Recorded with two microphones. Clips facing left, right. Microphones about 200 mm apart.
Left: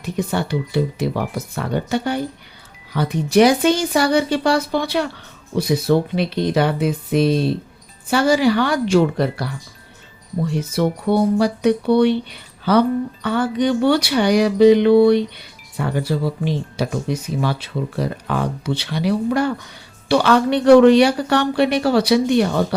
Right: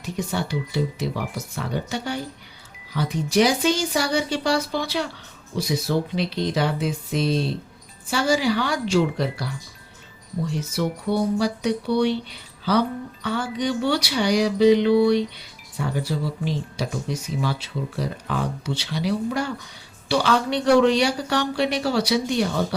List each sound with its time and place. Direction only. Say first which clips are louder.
0.0 s speech: left 5 dB; 60° left (ahead or behind)
10.6 s speech: left 8 dB; 55° left (ahead or behind)
13.2 s speech: left 5 dB; 55° left (ahead or behind)